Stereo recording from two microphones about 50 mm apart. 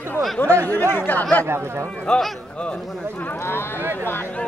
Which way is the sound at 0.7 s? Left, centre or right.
Left.